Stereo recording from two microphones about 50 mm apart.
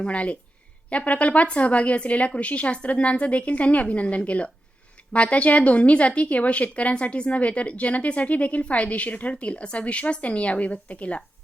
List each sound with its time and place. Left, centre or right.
0.0 s a woman's voice: left